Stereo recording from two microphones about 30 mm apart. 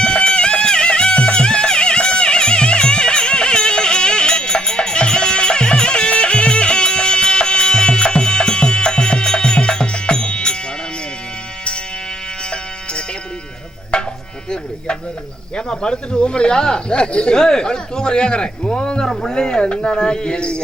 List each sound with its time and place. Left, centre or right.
0.0 s music: left
12.4 s music: left
13.9 s chopping: left
15.5 s speech: left
17.3 s speech: left